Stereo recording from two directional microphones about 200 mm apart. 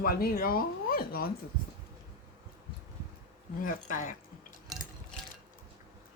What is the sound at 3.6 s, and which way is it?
Speech, 40° left (ahead or behind).